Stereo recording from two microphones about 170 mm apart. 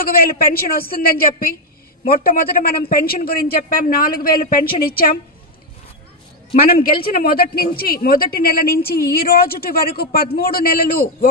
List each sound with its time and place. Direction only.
0.0 s a man's voice: 60° left (ahead or behind)
6.7 s a man's voice: 60° left (ahead or behind)